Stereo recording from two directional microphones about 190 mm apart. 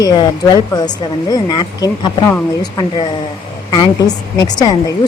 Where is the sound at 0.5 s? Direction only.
20° left (ahead or behind).